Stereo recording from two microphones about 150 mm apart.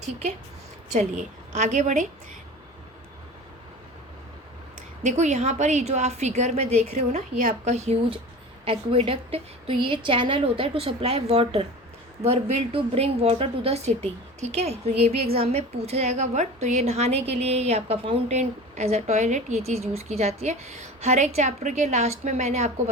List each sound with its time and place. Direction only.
0.0 s a woman's voice: 50° right (ahead or behind)
1.5 s a woman's voice: 50° right (ahead or behind)
5.1 s a woman's voice: 50° right (ahead or behind)